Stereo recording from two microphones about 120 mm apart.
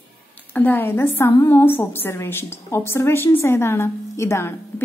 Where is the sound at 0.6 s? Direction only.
15° left (ahead or behind).